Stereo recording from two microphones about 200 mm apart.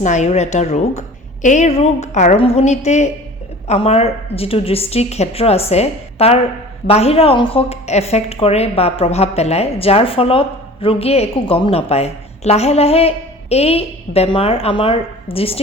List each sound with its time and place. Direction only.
0.0 s a woman's voice: 35° left (ahead or behind)